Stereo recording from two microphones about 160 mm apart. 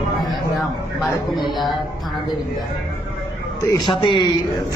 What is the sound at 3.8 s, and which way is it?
Speech, 30° left (ahead or behind).